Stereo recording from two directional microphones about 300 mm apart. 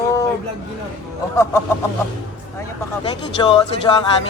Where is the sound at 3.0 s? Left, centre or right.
Centre.